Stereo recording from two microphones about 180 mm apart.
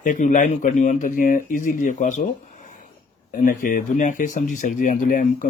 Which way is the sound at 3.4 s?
45° left (ahead or behind).